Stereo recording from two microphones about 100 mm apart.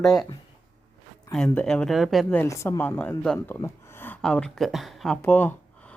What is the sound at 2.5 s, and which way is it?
Speech, 25° left (ahead or behind).